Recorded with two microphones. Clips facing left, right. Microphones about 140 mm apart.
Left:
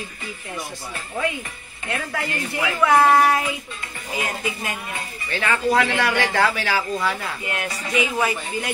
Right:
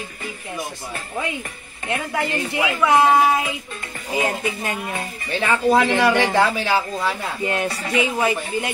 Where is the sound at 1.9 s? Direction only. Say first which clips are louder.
Right 4 dB; 20° right (ahead or behind).